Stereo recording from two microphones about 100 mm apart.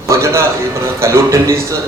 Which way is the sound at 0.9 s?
30° right (ahead or behind).